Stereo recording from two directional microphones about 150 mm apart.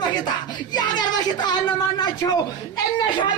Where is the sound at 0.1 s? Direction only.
30° left (ahead or behind).